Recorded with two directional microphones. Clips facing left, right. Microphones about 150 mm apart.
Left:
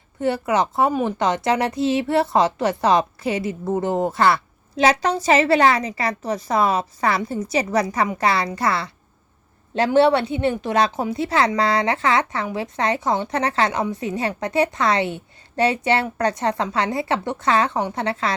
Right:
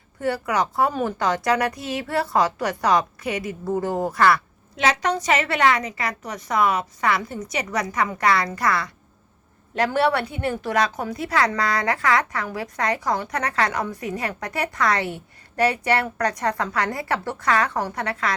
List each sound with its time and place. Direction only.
0.2 s a woman's voice: 25° left (ahead or behind)